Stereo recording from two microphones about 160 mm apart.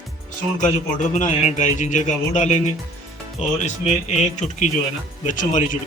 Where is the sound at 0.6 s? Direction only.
50° left (ahead or behind).